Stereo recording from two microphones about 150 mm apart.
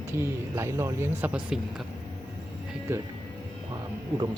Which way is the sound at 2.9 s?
15° right (ahead or behind).